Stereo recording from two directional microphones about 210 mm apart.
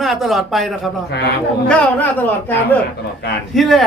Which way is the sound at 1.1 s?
55° left (ahead or behind).